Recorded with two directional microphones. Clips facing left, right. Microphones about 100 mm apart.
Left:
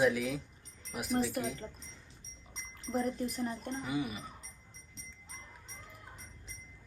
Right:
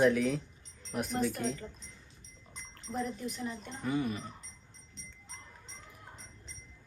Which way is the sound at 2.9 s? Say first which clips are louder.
Left 3 dB; 45° left (ahead or behind).